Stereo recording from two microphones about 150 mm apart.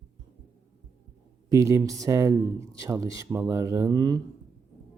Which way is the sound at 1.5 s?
20° right (ahead or behind).